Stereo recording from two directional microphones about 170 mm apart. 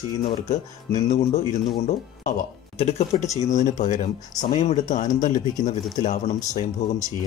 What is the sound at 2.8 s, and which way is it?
Speech, 40° left (ahead or behind).